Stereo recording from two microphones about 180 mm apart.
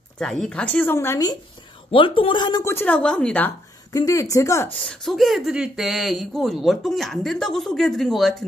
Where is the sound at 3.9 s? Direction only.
20° left (ahead or behind).